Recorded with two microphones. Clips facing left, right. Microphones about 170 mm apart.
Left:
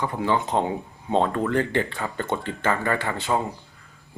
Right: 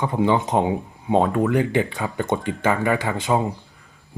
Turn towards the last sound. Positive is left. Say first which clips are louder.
# right 4 dB
turn(degrees=-15)  # may be behind; listen again after turning